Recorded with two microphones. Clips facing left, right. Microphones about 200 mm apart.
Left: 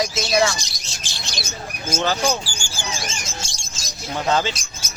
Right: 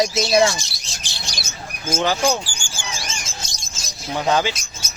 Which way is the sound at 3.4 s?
30° left (ahead or behind).